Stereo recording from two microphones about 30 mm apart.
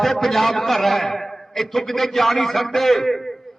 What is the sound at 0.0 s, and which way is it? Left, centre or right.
A man's voice, centre.